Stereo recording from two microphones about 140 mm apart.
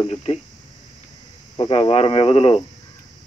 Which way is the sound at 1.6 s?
45° left (ahead or behind).